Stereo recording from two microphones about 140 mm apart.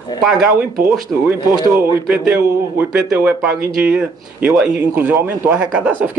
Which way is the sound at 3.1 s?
10° right (ahead or behind).